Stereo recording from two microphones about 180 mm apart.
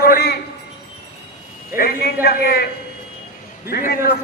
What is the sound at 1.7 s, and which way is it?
Speech, 60° left (ahead or behind).